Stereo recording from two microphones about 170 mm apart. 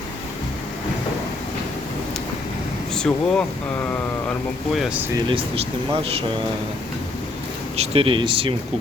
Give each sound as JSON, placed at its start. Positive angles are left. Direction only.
{"t": 2.9, "sound": "speech", "side_deg": 5}
{"t": 4.7, "sound": "speech", "side_deg": -5}
{"t": 5.1, "sound": "speech", "side_deg": -30}
{"t": 7.8, "sound": "speech", "side_deg": -30}